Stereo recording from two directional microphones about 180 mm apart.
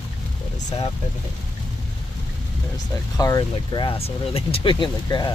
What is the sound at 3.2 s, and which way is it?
Speech, 20° left (ahead or behind).